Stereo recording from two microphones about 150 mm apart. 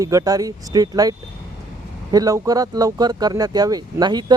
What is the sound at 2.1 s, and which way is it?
Speech, 25° right (ahead or behind).